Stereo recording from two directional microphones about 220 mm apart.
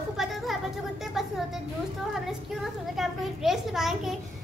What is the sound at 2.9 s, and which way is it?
A woman's voice, centre (ahead or behind).